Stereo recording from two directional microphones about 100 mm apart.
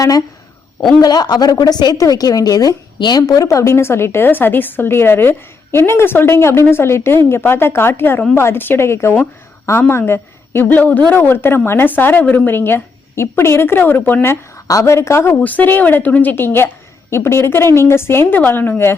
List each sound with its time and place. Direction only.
0.0 s a woman's voice: 35° left (ahead or behind)